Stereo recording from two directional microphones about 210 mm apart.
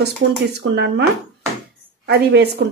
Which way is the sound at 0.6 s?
70° right (ahead or behind).